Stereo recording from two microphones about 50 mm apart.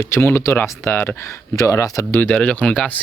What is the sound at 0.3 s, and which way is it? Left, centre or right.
Speech, left.